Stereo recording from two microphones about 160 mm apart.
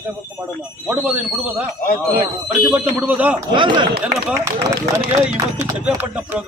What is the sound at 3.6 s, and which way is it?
Speech, 30° right (ahead or behind).